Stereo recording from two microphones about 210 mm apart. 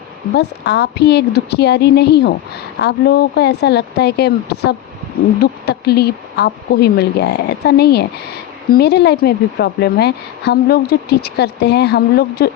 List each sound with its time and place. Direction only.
0.3 s a woman's voice: 55° left (ahead or behind)